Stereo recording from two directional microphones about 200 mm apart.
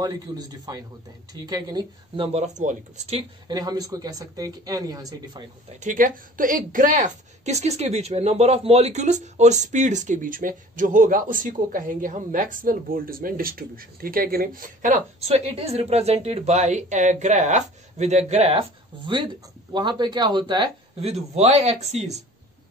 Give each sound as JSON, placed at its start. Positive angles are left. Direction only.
{"t": 0.0, "sound": "speech", "side_deg": -20}
{"t": 5.7, "sound": "a woman's voice", "side_deg": -40}